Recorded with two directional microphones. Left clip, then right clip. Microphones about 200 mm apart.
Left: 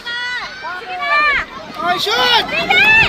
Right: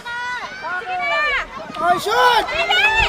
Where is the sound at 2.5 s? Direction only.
45° left (ahead or behind).